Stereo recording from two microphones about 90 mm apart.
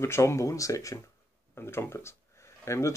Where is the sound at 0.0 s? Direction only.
30° left (ahead or behind).